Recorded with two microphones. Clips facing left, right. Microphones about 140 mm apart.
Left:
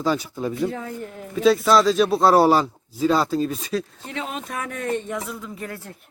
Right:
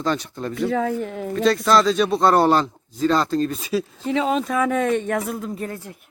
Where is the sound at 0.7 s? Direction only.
90° right.